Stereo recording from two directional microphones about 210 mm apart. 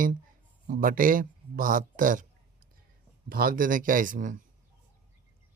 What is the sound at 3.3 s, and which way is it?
A man's voice, 45° right (ahead or behind).